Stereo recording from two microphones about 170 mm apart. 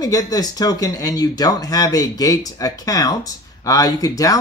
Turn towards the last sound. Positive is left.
turn(degrees=20)  # may be behind; listen again after turning